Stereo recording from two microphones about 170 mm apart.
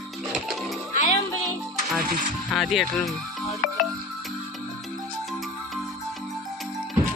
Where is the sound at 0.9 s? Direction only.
40° left (ahead or behind).